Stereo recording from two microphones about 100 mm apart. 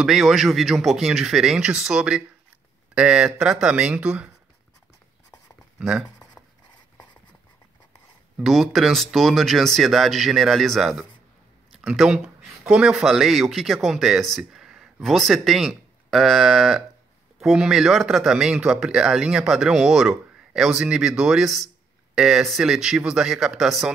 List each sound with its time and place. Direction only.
0.0 s speech: centre (ahead or behind)
5.8 s speech: 5° right (ahead or behind)
6.4 s writing: 20° left (ahead or behind)
8.4 s speech: centre (ahead or behind)